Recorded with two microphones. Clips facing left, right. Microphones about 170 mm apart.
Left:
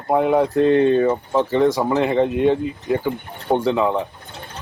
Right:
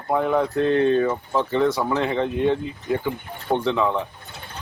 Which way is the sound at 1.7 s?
10° left (ahead or behind).